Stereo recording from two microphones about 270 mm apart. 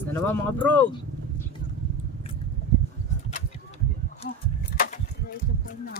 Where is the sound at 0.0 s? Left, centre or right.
Centre.